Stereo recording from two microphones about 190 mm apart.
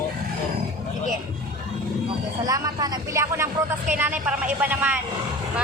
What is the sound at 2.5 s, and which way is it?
A woman's voice, 20° right (ahead or behind).